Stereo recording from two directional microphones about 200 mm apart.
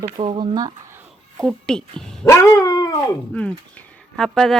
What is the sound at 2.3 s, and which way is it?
Dog, 15° left (ahead or behind).